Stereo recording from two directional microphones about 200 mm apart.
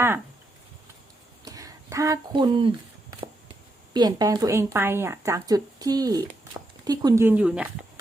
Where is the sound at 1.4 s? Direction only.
15° right (ahead or behind).